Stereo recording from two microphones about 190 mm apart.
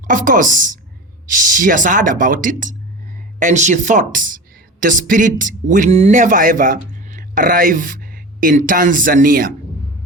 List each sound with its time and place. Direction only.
0.1 s speech: 45° right (ahead or behind)